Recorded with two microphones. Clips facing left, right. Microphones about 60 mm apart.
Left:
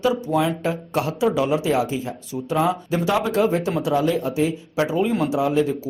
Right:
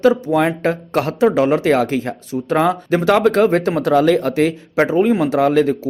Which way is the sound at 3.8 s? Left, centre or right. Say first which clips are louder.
Right 8 dB; right.